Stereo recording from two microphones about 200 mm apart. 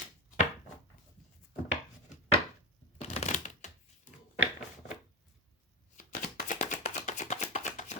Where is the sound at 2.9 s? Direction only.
35° left (ahead or behind).